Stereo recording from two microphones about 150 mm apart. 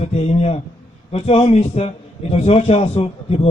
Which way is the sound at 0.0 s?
45° left (ahead or behind).